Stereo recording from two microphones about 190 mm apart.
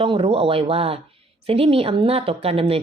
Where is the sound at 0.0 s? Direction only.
30° right (ahead or behind).